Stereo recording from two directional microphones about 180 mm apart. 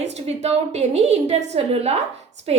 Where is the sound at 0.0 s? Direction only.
35° right (ahead or behind).